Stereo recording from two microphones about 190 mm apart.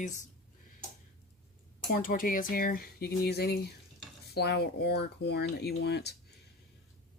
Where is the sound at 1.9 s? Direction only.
50° left (ahead or behind).